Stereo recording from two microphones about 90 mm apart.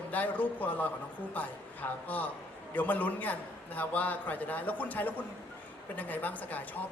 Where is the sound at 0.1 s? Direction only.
20° left (ahead or behind).